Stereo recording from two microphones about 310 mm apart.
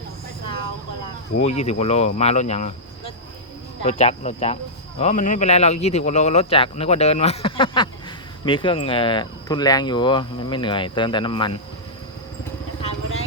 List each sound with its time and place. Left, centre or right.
1.4 s speech: left
3.8 s speech: left